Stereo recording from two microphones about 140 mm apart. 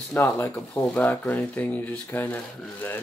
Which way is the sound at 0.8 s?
10° left (ahead or behind).